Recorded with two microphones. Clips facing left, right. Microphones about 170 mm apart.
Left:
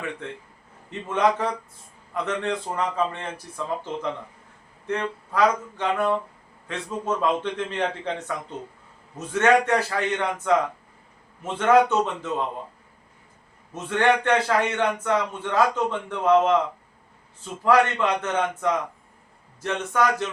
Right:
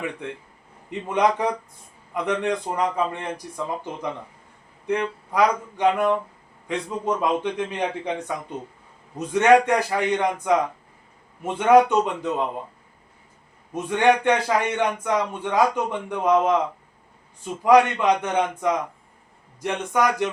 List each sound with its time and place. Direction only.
0.9 s a man's voice: 15° right (ahead or behind)
4.9 s a man's voice: 15° right (ahead or behind)
13.7 s a man's voice: 15° right (ahead or behind)